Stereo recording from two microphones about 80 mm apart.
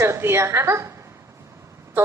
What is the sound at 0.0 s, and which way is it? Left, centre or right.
Speech, right.